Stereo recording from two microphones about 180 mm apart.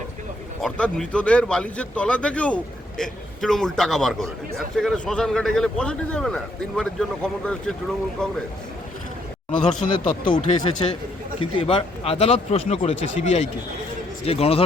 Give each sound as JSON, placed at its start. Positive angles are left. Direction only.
{"t": 0.6, "sound": "speech", "side_deg": 5}
{"t": 9.6, "sound": "a man's voice", "side_deg": 30}